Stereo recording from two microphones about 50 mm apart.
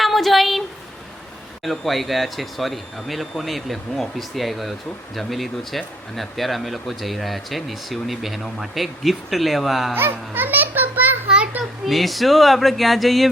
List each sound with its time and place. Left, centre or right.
0.0 s a sound: centre
1.6 s speech: centre
9.9 s music: right
11.9 s speech: centre